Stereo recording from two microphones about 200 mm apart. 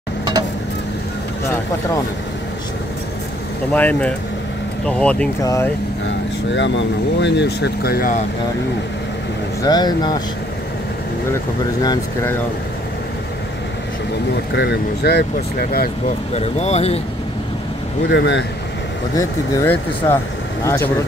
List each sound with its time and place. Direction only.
3.7 s speech: 10° left (ahead or behind)
5.4 s speech: 15° left (ahead or behind)
6.5 s speech: 65° left (ahead or behind); by 8.2 s 50° left (ahead or behind)
9.6 s speech: 20° left (ahead or behind)
11.8 s speech: 15° left (ahead or behind)
14.3 s speech: 60° left (ahead or behind)
16.3 s speech: 35° left (ahead or behind)
18.1 s speech: 60° left (ahead or behind)
19.1 s speech: 15° left (ahead or behind)